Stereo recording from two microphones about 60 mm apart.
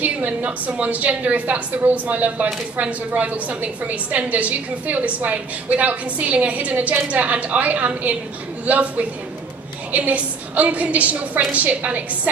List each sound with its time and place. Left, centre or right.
0.0 s speech: right